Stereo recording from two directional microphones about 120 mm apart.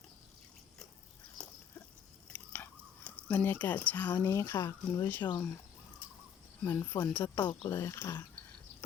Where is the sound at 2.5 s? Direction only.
10° left (ahead or behind).